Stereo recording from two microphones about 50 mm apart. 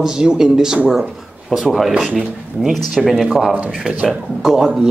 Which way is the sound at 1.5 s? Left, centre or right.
Centre.